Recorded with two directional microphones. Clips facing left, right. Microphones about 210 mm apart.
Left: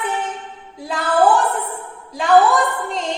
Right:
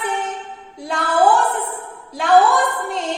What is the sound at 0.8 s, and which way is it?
Music, centre (ahead or behind).